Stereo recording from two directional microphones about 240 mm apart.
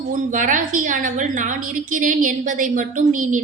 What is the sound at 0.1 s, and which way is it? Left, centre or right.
A woman's voice, right.